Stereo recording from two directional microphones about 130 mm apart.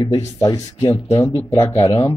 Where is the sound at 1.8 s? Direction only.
45° left (ahead or behind).